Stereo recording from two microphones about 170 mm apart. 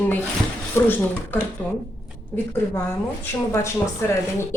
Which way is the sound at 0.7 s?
10° left (ahead or behind).